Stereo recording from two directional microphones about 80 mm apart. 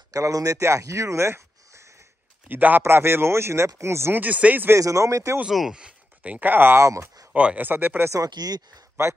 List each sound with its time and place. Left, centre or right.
0.1 s speech: right
2.4 s a man's voice: right
4.2 s speech: centre
4.7 s speech: right
5.5 s speech: centre; by 6.9 s right
6.9 s speech: right
7.3 s speech: centre
8.3 s speech: right